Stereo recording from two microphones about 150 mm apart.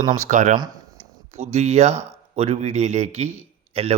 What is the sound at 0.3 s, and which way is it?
Speech, 55° right (ahead or behind).